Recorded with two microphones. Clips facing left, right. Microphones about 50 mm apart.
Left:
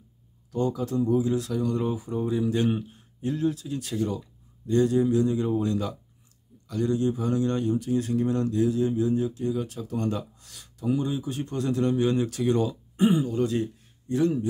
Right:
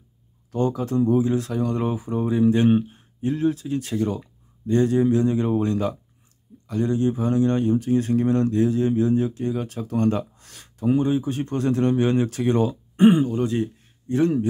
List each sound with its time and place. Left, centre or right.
0.5 s speech: right
13.3 s speech: right
14.1 s a man's voice: right